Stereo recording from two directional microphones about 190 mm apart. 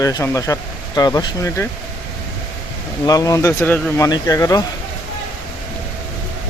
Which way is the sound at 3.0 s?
20° left (ahead or behind).